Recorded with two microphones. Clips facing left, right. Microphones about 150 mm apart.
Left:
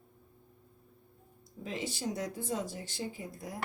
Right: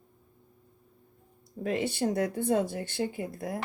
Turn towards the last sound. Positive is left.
turn(degrees=-60)  # may be behind; listen again after turning